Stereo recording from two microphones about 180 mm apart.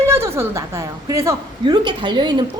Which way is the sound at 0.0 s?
15° right (ahead or behind).